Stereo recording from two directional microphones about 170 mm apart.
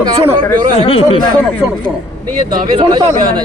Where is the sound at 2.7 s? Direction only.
25° right (ahead or behind).